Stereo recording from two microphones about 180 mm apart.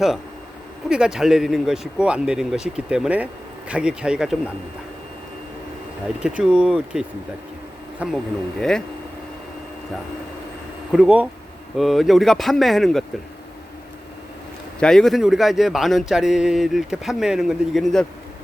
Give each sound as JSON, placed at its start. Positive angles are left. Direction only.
{"t": 0.9, "sound": "speech", "side_deg": -5}
{"t": 6.4, "sound": "speech", "side_deg": -5}
{"t": 10.9, "sound": "speech", "side_deg": -5}
{"t": 14.8, "sound": "speech", "side_deg": 5}